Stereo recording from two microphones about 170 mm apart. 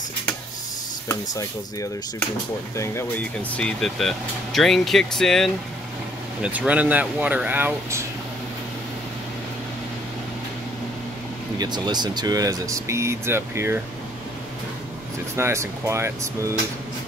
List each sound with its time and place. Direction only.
1.3 s speech: 20° left (ahead or behind); by 8.0 s 10° right (ahead or behind)
11.5 s speech: 25° right (ahead or behind)
15.3 s speech: 15° right (ahead or behind)